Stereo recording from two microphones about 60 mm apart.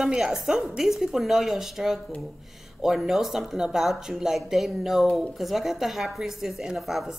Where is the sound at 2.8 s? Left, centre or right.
Centre.